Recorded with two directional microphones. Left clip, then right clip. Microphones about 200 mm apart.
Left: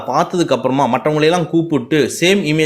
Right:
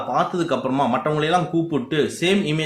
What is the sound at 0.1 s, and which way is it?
Speech, 35° left (ahead or behind).